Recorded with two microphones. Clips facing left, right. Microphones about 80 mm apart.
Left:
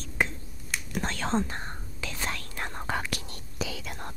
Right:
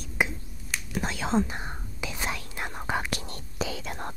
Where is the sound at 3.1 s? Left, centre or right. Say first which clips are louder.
Right 2 dB; right.